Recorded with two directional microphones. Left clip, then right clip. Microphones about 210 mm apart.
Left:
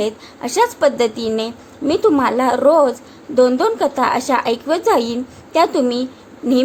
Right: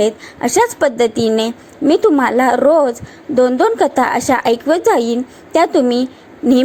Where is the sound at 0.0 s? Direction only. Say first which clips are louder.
Right 6 dB; 20° right (ahead or behind).